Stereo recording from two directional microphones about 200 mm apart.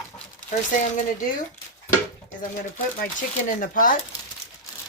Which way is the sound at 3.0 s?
40° left (ahead or behind).